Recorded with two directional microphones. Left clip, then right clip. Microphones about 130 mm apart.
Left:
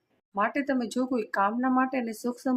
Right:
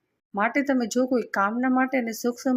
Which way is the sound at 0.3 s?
20° right (ahead or behind).